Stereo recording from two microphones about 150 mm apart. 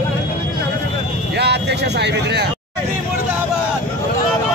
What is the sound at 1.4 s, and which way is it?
Speech, 90° right.